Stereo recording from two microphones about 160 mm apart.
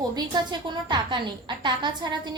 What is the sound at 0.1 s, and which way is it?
A woman's voice, 25° right (ahead or behind).